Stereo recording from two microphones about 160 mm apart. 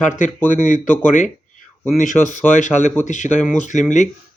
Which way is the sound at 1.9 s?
55° left (ahead or behind).